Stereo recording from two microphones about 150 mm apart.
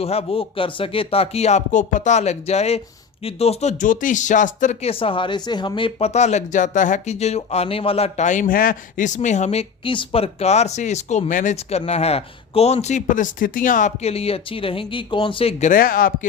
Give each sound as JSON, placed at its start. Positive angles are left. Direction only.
{"t": 0.0, "sound": "speech", "side_deg": 40}
{"t": 11.5, "sound": "speech", "side_deg": 45}
{"t": 15.8, "sound": "speech", "side_deg": 70}